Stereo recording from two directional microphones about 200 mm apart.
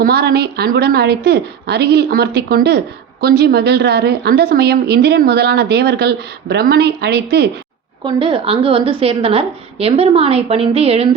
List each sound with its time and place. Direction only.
0.0 s a woman's voice: 50° right (ahead or behind)
8.0 s a woman's voice: 25° right (ahead or behind)